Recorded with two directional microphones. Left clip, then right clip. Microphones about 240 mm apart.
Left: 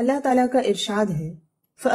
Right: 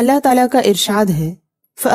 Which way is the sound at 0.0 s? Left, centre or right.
Right.